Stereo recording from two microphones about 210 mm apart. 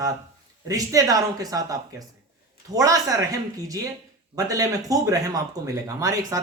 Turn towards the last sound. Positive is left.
turn(degrees=-15)  # may be behind; listen again after turning